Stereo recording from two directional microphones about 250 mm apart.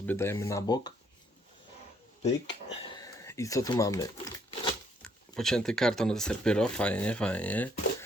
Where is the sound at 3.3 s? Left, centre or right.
Centre.